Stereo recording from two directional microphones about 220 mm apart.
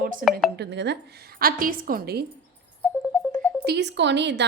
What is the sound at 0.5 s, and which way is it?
Speech, 50° right (ahead or behind).